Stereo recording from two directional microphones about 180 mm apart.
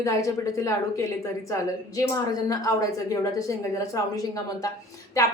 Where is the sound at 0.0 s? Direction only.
20° left (ahead or behind).